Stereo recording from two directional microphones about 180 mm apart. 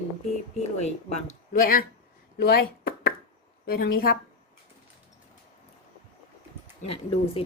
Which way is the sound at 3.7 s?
55° left (ahead or behind).